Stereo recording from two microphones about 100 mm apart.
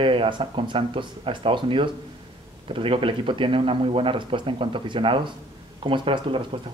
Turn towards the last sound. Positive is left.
turn(degrees=-60)  # may be behind; listen again after turning